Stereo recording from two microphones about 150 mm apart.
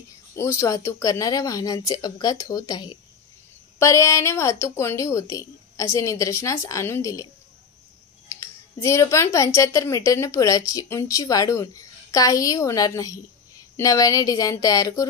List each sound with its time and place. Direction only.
0.4 s speech: 20° left (ahead or behind)
8.4 s speech: 20° left (ahead or behind)